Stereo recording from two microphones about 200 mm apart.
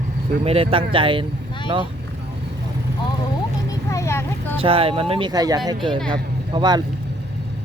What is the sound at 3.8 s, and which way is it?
Vehicle, 15° left (ahead or behind).